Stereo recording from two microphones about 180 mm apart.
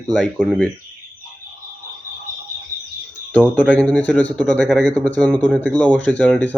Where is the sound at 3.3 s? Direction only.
10° left (ahead or behind).